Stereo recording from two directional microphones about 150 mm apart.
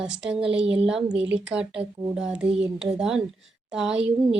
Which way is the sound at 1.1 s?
5° right (ahead or behind).